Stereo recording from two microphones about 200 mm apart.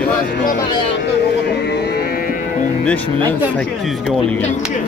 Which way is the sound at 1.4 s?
55° left (ahead or behind).